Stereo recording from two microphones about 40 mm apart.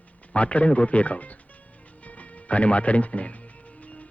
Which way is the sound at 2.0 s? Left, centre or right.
Left.